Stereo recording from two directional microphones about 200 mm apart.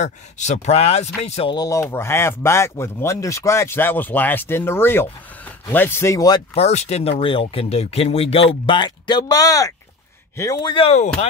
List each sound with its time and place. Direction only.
0.0 s speech: 35° left (ahead or behind); by 6.4 s 15° left (ahead or behind)
6.5 s speech: 30° left (ahead or behind)